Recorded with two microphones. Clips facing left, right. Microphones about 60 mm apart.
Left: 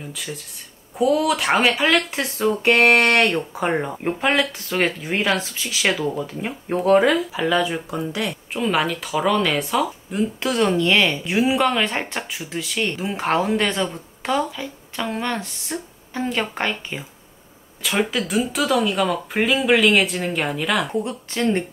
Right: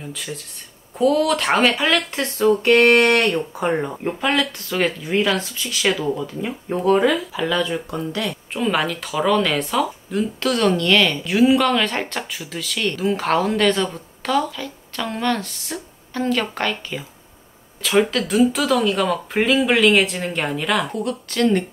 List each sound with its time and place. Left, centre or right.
0.0 s speech: centre
2.6 s speech: left
3.7 s speech: centre
6.1 s speech: left
6.8 s speech: centre
10.4 s speech: centre
17.8 s speech: centre
20.9 s speech: left